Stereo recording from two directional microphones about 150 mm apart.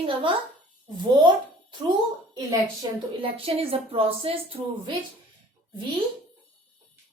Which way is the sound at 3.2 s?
40° right (ahead or behind).